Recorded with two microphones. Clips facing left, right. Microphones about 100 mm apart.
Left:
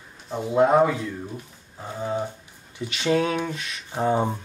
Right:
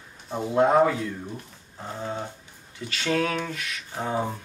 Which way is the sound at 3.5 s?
25° left (ahead or behind).